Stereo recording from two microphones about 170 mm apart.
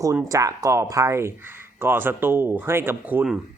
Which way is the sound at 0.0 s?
20° right (ahead or behind).